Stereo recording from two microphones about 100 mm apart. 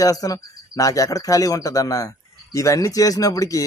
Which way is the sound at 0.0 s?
35° left (ahead or behind).